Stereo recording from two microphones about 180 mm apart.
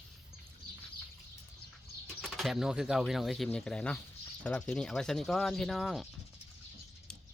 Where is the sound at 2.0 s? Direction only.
Centre (ahead or behind).